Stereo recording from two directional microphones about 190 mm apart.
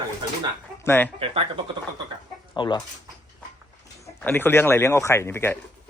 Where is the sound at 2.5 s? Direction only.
25° left (ahead or behind).